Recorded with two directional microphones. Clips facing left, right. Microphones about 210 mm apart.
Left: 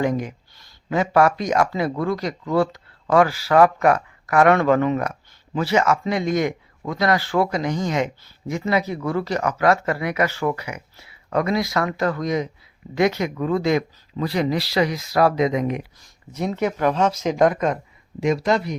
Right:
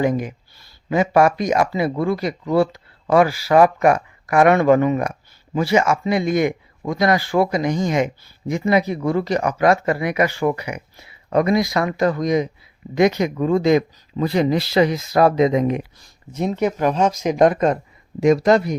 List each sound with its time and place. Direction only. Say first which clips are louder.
0.0 s speech: right 2 dB; 10° right (ahead or behind); by 17.7 s 30° right (ahead or behind)
18.2 s speech: right 6 dB; 45° right (ahead or behind)